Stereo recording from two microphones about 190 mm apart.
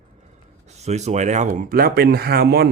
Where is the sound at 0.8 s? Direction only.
35° right (ahead or behind); by 2.6 s 55° right (ahead or behind).